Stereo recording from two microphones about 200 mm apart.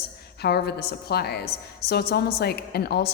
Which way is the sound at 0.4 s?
50° left (ahead or behind).